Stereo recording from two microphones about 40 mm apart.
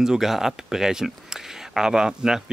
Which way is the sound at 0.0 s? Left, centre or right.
Centre.